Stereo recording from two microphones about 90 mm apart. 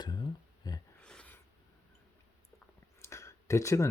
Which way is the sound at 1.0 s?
10° left (ahead or behind).